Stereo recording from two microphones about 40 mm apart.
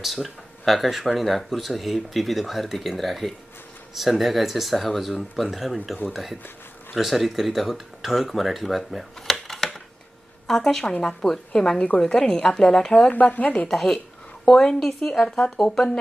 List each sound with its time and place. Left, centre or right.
0.0 s speech: centre
9.3 s a sound: centre
10.4 s speech: centre
13.1 s speech: left
13.7 s speech: centre